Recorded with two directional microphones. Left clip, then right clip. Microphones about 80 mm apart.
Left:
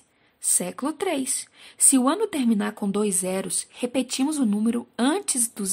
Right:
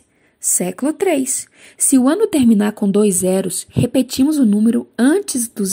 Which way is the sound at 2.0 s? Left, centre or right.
Right.